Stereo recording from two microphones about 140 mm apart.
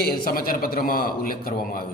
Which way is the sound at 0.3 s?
90° left.